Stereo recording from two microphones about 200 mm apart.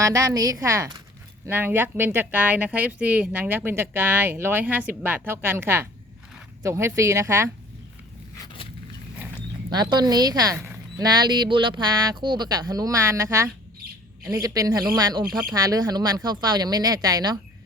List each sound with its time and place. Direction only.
0.0 s speech: 15° right (ahead or behind)
9.7 s a woman's voice: 20° right (ahead or behind)